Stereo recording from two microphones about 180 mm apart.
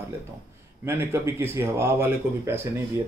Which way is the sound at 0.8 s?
15° right (ahead or behind).